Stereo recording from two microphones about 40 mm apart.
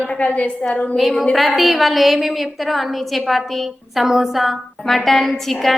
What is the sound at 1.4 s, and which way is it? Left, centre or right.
A woman's voice, centre.